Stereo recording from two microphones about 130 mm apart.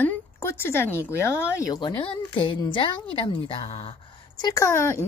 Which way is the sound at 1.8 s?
40° left (ahead or behind).